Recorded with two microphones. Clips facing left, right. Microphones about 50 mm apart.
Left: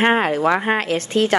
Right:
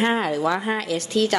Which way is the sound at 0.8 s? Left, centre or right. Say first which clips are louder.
Left 3 dB; left.